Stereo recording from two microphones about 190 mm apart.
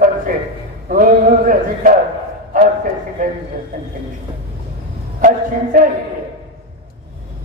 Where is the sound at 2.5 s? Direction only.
45° right (ahead or behind).